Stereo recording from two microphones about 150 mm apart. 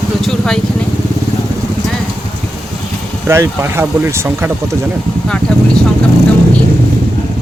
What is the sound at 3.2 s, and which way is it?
Speech, 20° right (ahead or behind).